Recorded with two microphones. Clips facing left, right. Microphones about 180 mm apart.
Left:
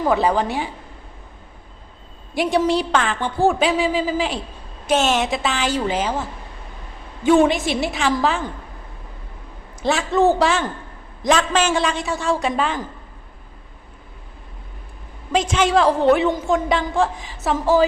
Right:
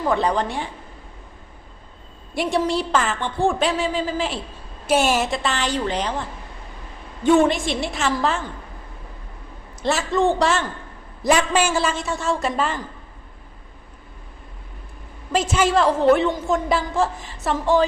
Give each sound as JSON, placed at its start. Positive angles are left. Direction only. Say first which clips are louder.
{"t": 0.1, "sound": "a woman's voice", "louder": "left 2 dB", "side_deg": 5}
{"t": 2.3, "sound": "a woman's voice", "louder": "left 3 dB", "side_deg": 0}
{"t": 4.9, "sound": "a woman's voice", "louder": "left 1 dB", "side_deg": -10}
{"t": 7.3, "sound": "a woman's voice", "louder": "left 1 dB", "side_deg": 0}
{"t": 9.8, "sound": "a woman's voice", "louder": "left 3 dB", "side_deg": 0}
{"t": 11.2, "sound": "a woman's voice", "louder": "even", "side_deg": -10}
{"t": 15.3, "sound": "a woman's voice", "louder": "left 1 dB", "side_deg": -5}